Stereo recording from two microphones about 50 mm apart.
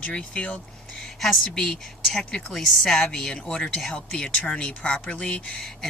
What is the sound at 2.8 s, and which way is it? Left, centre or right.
Speech, centre.